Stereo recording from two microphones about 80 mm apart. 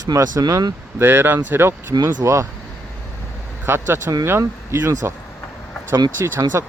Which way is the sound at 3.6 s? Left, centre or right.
Right.